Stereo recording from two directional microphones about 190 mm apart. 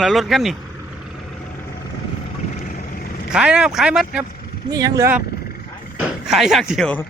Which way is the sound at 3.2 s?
5° right (ahead or behind).